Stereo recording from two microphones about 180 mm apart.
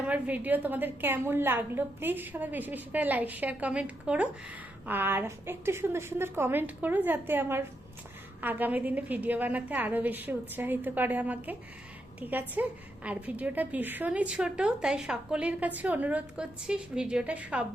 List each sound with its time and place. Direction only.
0.1 s a woman's voice: 10° right (ahead or behind)